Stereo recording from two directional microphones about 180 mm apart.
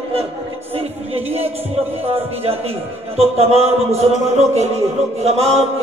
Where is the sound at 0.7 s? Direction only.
35° right (ahead or behind).